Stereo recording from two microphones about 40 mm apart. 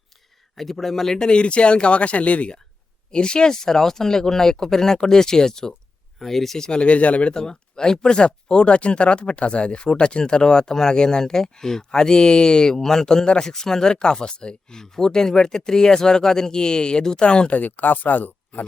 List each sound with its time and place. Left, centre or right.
0.5 s speech: centre
1.3 s speech: left
3.1 s speech: left
6.6 s speech: left
7.3 s speech: centre
17.5 s speech: left